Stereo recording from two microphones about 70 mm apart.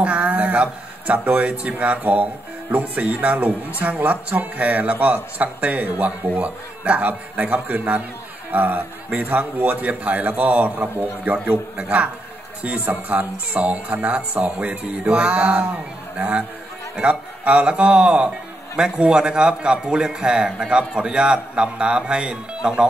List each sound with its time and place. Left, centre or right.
0.0 s speech: right
11.7 s a man's voice: centre
12.9 s speech: right
14.1 s a man's voice: centre